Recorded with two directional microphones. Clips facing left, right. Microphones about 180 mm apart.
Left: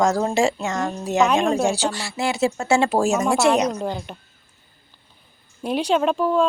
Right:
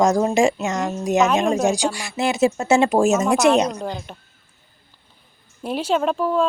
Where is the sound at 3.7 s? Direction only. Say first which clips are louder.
Left 2 dB; 5° left (ahead or behind).